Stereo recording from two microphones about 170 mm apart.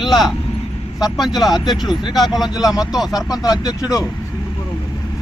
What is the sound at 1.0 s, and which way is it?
Speech, centre (ahead or behind).